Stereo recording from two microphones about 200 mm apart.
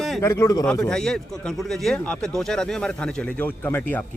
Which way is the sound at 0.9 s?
5° left (ahead or behind).